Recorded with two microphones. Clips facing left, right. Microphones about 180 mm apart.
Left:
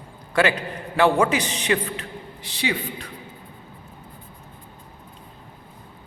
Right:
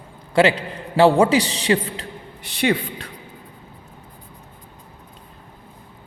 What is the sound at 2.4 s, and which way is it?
Speech, 60° right (ahead or behind).